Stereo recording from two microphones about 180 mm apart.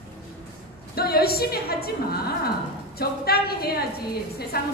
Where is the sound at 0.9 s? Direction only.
60° left (ahead or behind).